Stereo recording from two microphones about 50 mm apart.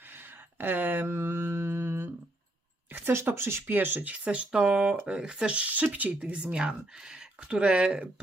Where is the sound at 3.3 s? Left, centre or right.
Right.